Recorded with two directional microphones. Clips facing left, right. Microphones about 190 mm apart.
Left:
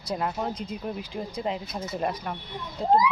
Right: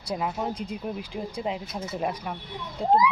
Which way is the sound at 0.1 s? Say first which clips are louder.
Even; 5° right (ahead or behind).